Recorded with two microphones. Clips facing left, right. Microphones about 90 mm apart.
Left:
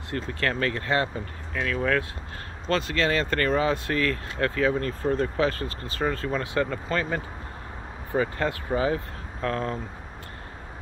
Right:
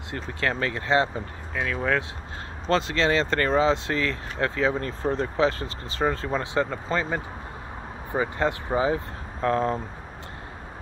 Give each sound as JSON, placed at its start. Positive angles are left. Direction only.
{"t": 0.1, "sound": "speech", "side_deg": -20}